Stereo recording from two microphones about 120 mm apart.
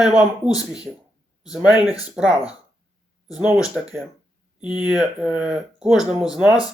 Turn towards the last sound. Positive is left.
turn(degrees=-5)  # may be behind; listen again after turning